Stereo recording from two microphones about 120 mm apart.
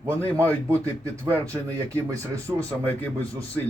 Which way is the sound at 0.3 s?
25° right (ahead or behind).